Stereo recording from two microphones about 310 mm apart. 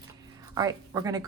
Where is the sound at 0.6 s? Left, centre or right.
Centre.